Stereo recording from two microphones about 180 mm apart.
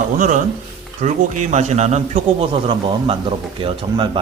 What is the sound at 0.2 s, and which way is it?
A man's voice, 45° right (ahead or behind).